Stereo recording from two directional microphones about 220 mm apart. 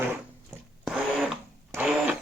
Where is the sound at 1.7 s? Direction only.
5° right (ahead or behind).